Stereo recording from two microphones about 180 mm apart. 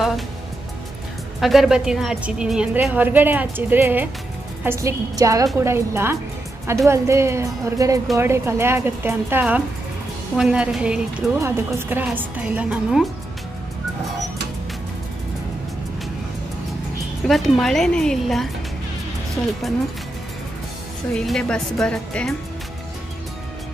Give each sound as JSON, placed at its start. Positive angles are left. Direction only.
{"t": 1.4, "sound": "a woman's voice", "side_deg": 0}
{"t": 17.3, "sound": "speech", "side_deg": 0}
{"t": 21.1, "sound": "speech", "side_deg": 5}